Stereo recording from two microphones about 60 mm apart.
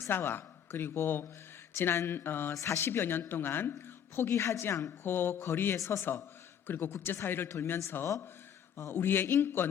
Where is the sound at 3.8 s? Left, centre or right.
Left.